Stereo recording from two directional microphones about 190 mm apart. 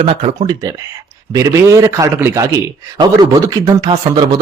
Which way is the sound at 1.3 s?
15° right (ahead or behind).